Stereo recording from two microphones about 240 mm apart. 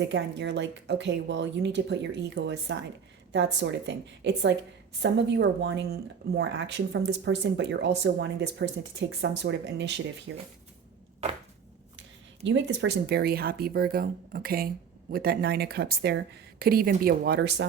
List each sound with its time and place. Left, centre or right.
0.1 s speech: right
12.5 s speech: right